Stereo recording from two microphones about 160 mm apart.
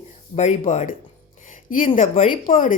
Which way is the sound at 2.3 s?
55° left (ahead or behind).